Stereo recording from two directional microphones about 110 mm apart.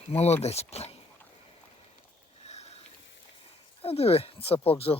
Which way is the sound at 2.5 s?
80° left.